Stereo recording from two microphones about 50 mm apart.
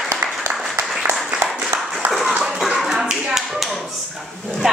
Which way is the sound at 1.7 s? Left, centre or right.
Right.